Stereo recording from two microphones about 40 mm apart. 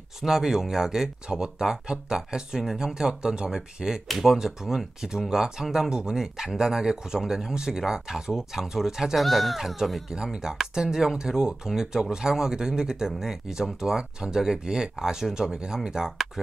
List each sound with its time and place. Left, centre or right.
0.2 s speech: centre
9.2 s speech: centre
10.0 s speech: centre